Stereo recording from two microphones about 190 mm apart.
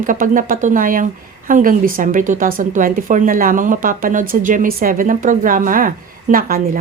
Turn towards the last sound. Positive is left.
turn(degrees=-50)  # may be behind; listen again after turning